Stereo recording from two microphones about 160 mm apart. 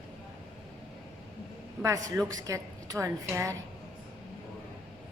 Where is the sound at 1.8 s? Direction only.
20° right (ahead or behind).